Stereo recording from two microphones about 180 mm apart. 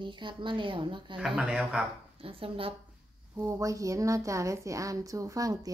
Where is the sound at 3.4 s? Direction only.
15° right (ahead or behind).